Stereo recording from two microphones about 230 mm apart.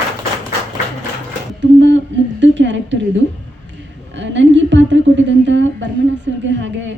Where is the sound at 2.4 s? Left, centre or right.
Right.